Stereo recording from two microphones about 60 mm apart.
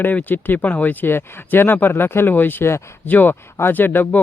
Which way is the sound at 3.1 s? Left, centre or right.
Left.